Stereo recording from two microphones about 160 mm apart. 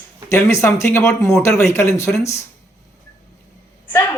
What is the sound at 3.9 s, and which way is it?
Speech, 15° left (ahead or behind).